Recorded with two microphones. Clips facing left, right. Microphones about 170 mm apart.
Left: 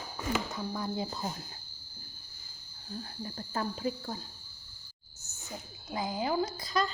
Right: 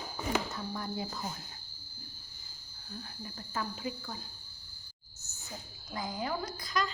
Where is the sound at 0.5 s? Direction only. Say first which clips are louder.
Left 3 dB; 20° left (ahead or behind).